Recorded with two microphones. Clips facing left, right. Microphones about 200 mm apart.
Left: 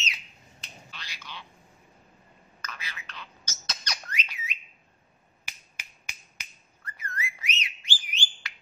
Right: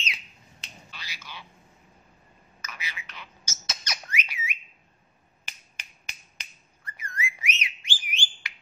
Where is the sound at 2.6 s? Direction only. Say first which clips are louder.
Right 1 dB; 10° right (ahead or behind).